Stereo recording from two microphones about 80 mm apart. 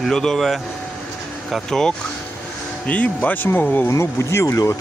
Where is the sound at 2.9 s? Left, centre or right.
Centre.